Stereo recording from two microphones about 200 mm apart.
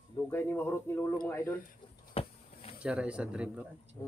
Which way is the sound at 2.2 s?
30° left (ahead or behind).